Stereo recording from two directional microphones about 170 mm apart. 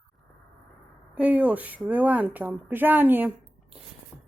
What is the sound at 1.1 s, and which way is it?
Speech, 10° right (ahead or behind).